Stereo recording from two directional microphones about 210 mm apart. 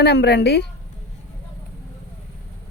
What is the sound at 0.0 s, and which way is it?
Speech, 50° left (ahead or behind).